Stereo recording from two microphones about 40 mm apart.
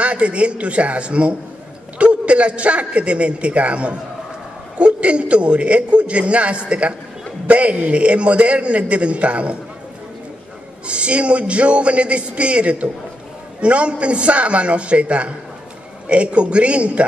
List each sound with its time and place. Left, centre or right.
0.0 s a man's voice: right
10.9 s a man's voice: right